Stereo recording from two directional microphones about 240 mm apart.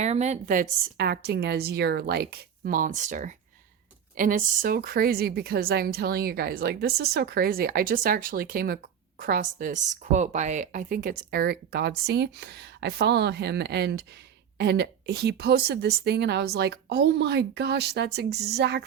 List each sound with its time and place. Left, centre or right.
0.0 s a woman's voice: right